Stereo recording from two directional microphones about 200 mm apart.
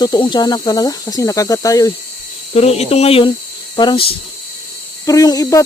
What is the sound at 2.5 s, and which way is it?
Speech, 30° left (ahead or behind).